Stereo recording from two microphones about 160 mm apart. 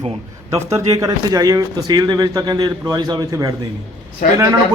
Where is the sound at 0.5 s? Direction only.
20° right (ahead or behind).